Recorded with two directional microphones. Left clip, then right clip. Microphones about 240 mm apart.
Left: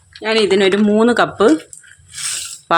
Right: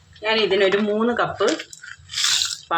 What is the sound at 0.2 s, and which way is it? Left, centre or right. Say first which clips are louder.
Speech: left 4 dB; left.